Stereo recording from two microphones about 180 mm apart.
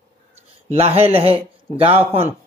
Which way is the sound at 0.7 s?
35° right (ahead or behind).